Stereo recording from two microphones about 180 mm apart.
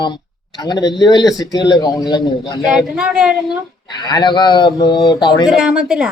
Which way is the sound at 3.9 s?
25° left (ahead or behind).